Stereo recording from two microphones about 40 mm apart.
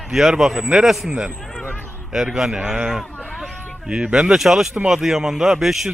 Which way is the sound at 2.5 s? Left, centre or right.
Right.